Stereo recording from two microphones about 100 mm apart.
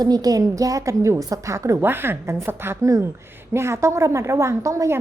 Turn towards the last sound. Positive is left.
turn(degrees=-30)  # may be behind; listen again after turning